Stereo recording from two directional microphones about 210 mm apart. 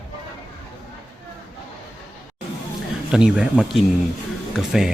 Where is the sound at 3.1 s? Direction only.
5° right (ahead or behind).